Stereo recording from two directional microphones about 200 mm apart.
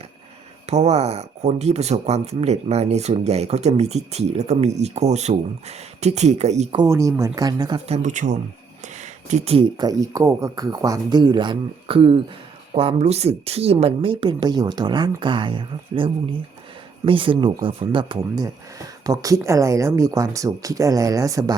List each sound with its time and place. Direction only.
0.7 s speech: 35° right (ahead or behind)
6.8 s speech: 15° right (ahead or behind)
7.9 s a woman's voice: 35° right (ahead or behind)
17.1 s a woman's voice: 25° right (ahead or behind)